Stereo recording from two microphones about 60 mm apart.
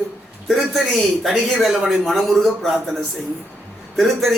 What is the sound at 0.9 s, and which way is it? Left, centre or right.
A man's voice, centre.